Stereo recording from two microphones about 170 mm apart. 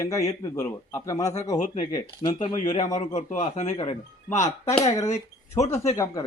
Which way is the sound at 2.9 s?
45° left (ahead or behind).